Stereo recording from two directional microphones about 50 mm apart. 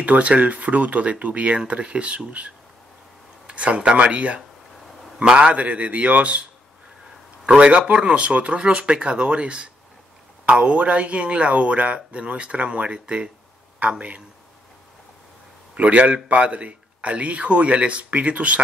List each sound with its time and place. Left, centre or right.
0.0 s a man's voice: right
7.4 s a man's voice: right
15.7 s a man's voice: right